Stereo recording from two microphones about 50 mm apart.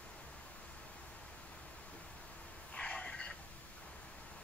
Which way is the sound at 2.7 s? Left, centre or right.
Centre.